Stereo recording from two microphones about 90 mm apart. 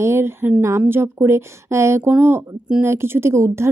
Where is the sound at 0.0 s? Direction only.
30° right (ahead or behind).